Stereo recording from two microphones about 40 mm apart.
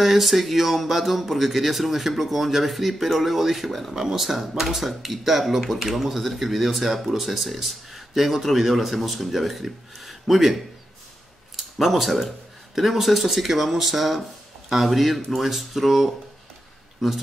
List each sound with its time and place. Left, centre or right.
0.0 s speech: centre